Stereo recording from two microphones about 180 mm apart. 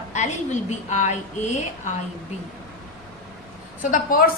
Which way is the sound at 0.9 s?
40° left (ahead or behind).